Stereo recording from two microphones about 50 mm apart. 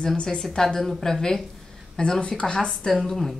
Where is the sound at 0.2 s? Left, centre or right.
Centre.